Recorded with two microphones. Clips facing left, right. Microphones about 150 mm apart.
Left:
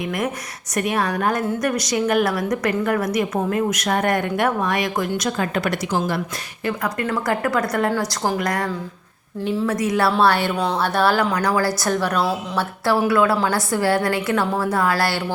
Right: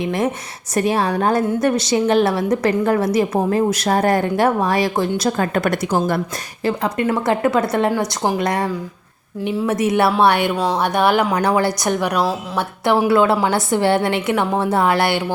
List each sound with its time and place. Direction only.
0.0 s a woman's voice: 30° right (ahead or behind)
5.5 s a woman's voice: 50° right (ahead or behind)
6.7 s speech: 25° right (ahead or behind)